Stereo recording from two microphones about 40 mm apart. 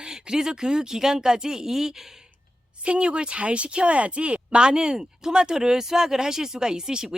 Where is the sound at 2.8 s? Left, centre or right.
Right.